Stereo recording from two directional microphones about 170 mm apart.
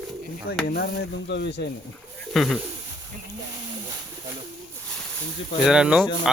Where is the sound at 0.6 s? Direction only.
70° left (ahead or behind).